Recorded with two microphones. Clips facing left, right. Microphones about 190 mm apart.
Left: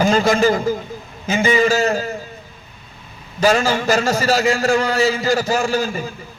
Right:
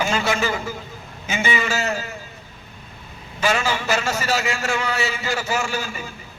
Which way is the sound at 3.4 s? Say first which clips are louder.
Left 6 dB; 40° left (ahead or behind).